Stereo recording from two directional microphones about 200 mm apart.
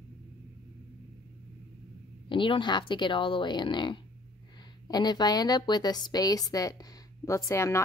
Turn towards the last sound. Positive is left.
turn(degrees=15)  # may be behind; listen again after turning